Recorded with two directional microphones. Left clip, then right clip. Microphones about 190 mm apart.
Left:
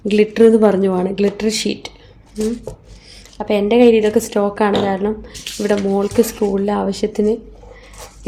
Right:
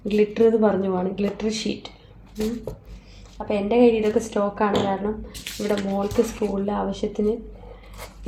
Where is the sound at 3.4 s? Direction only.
55° left (ahead or behind).